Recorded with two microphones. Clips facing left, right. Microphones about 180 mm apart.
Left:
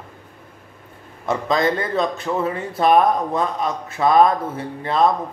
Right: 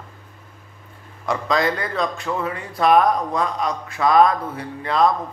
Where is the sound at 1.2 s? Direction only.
25° left (ahead or behind).